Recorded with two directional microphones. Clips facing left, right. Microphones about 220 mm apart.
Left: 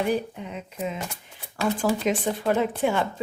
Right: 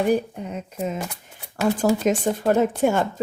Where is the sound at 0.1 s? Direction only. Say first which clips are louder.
Right 4 dB; 45° right (ahead or behind).